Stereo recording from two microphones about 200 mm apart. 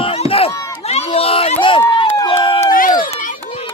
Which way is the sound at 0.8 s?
30° left (ahead or behind).